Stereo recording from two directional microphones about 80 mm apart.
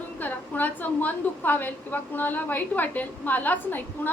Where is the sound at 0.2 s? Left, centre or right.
Left.